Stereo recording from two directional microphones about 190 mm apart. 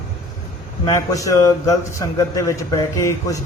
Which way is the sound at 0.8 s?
15° left (ahead or behind).